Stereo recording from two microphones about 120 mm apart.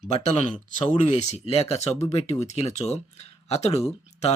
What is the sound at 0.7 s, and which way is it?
Speech, 90° left.